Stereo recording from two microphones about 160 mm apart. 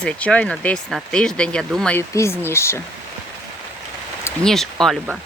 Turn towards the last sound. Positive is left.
turn(degrees=0)  # may be behind; listen again after turning